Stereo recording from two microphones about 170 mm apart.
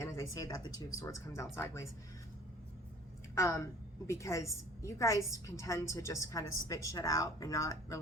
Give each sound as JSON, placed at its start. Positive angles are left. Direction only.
{"t": 0.0, "sound": "a woman's voice", "side_deg": 20}
{"t": 3.3, "sound": "a woman's voice", "side_deg": 15}